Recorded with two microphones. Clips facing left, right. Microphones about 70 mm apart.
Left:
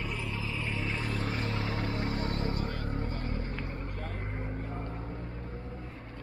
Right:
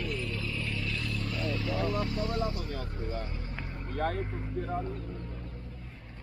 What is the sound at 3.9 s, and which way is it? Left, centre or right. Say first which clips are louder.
Speech: right 9 dB; right.